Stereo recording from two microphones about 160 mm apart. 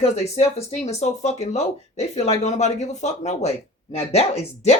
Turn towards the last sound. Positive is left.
turn(degrees=40)  # may be behind; listen again after turning